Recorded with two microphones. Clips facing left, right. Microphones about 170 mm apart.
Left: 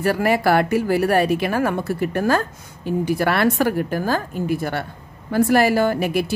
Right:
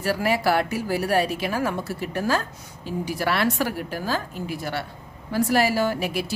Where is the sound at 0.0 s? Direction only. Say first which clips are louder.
Left 4 dB; 55° left (ahead or behind).